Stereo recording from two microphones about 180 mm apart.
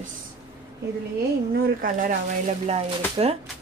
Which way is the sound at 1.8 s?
50° right (ahead or behind).